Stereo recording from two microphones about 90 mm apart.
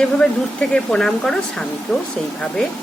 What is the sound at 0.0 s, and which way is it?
Speech, 10° left (ahead or behind).